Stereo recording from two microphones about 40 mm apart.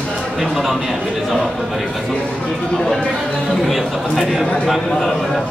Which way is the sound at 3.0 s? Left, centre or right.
Centre.